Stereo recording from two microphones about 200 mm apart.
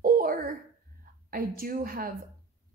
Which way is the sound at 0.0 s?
45° right (ahead or behind).